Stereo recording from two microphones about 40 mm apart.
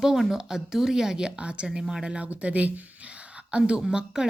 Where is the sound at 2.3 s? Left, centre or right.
Right.